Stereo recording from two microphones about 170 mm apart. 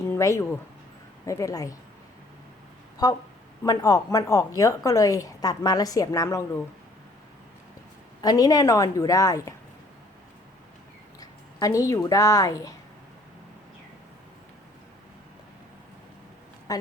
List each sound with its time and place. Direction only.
0.0 s a sound: 15° left (ahead or behind)
1.2 s a woman's voice: 20° left (ahead or behind)
3.0 s a woman's voice: 25° left (ahead or behind)
8.2 s a woman's voice: 20° left (ahead or behind)
11.2 s a woman's voice: 20° left (ahead or behind)